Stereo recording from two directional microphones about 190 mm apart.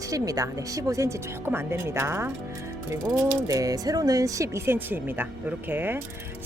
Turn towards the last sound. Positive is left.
turn(degrees=-10)  # may be behind; listen again after turning